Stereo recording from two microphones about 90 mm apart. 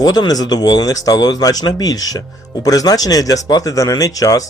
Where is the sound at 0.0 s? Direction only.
45° left (ahead or behind).